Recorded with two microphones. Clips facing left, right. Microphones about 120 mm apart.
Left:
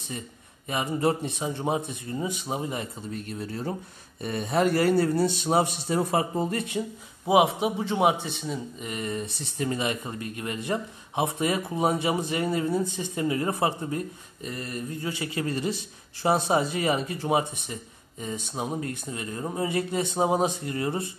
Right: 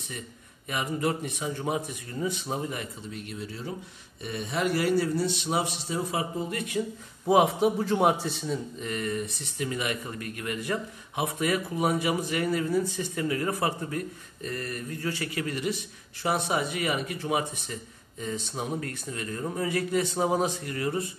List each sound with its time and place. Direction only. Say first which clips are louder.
0.7 s speech: left 3 dB; 30° left (ahead or behind)
2.8 s a man's voice: left 3 dB; 40° left (ahead or behind); by 6.2 s 55° left (ahead or behind)
6.3 s speech: left 3 dB; 35° left (ahead or behind)
7.2 s a man's voice: even; 5° left (ahead or behind)
8.8 s speech: even; 20° left (ahead or behind)
18.2 s speech: left 1 dB; 15° left (ahead or behind)